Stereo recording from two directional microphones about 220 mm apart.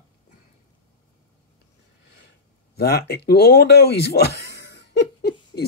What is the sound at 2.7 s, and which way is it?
Speech, 45° left (ahead or behind).